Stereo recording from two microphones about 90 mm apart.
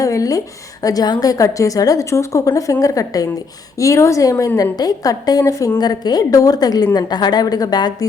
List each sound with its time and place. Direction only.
0.0 s a woman's voice: 40° left (ahead or behind)